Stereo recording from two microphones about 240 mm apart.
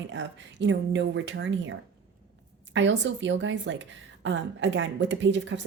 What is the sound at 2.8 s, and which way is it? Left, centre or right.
A woman's voice, right.